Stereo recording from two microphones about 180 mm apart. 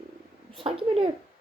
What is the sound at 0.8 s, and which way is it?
Speech, 30° right (ahead or behind).